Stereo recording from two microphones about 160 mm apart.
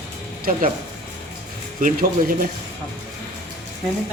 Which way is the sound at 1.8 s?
60° right (ahead or behind).